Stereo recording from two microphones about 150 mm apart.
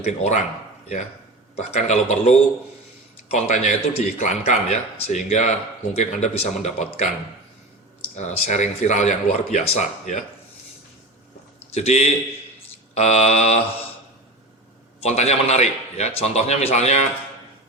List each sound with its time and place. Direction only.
0.0 s speech: 50° left (ahead or behind)
1.5 s speech: 45° left (ahead or behind)
8.1 s speech: 50° left (ahead or behind)
11.7 s speech: 45° left (ahead or behind)
15.0 s speech: 45° left (ahead or behind)